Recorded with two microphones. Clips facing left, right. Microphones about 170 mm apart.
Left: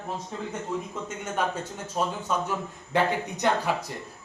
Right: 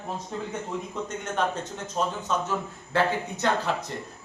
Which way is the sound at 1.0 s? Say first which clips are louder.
Right 3 dB; 10° left (ahead or behind).